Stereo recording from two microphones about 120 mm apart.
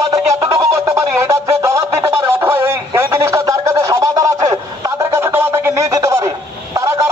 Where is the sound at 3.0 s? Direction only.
20° right (ahead or behind).